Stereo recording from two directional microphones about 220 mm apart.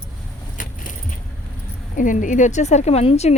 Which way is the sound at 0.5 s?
35° left (ahead or behind).